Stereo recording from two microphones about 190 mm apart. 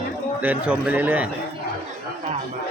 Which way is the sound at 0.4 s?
5° right (ahead or behind).